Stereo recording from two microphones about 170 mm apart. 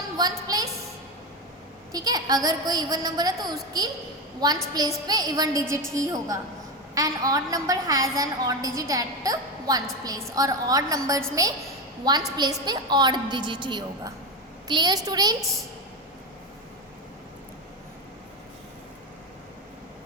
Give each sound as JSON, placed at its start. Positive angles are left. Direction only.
{"t": 0.2, "sound": "a woman's voice", "side_deg": -25}
{"t": 1.9, "sound": "a woman's voice", "side_deg": -20}